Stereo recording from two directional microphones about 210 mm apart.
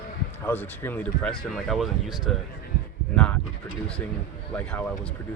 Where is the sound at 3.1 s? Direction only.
5° left (ahead or behind).